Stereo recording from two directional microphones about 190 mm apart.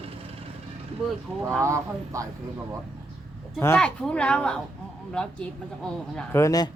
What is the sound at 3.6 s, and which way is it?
Speech, 10° left (ahead or behind).